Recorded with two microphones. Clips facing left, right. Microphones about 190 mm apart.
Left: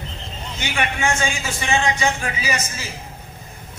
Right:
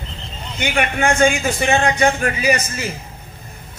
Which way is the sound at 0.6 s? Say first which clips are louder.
Right 5 dB; 60° right (ahead or behind).